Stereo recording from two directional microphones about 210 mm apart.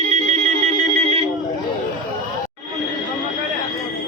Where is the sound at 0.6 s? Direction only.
30° right (ahead or behind).